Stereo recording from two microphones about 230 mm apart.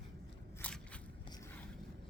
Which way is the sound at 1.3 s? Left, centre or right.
Centre.